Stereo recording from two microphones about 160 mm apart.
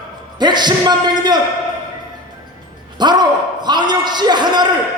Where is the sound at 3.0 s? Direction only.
25° right (ahead or behind).